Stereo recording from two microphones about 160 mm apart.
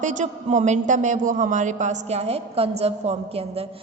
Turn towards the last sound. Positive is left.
turn(degrees=-40)  # may be behind; listen again after turning